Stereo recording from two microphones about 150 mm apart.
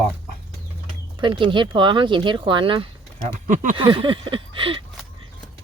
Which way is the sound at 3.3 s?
55° right (ahead or behind).